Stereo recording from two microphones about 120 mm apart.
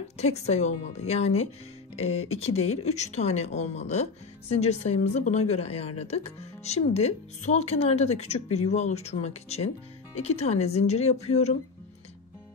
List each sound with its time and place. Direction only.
0.2 s speech: 65° left (ahead or behind)